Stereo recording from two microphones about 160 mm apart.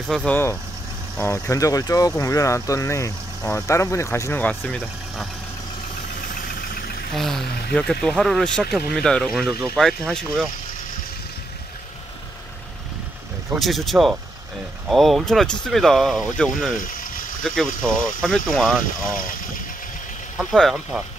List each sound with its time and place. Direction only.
0.0 s speech: 5° left (ahead or behind)
6.3 s vehicle: 65° left (ahead or behind)
7.2 s speech: centre (ahead or behind)
13.6 s speech: centre (ahead or behind)
20.3 s speech: centre (ahead or behind)